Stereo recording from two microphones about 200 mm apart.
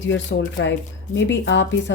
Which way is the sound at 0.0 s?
65° left (ahead or behind).